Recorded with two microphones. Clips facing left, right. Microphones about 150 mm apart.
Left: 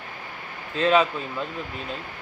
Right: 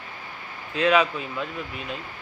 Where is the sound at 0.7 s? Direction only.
35° left (ahead or behind).